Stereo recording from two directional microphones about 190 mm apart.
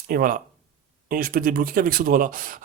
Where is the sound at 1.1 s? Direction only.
50° right (ahead or behind).